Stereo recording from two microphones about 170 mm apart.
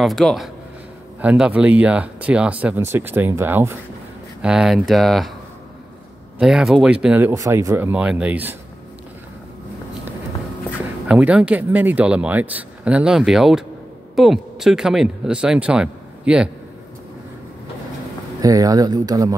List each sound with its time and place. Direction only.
0.0 s speech: centre (ahead or behind)
6.3 s speech: 5° right (ahead or behind)
11.1 s speech: 5° right (ahead or behind)
18.4 s speech: 20° right (ahead or behind)